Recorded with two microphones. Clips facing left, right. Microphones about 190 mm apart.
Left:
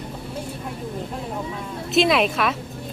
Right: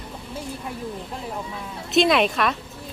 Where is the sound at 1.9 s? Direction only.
Centre (ahead or behind).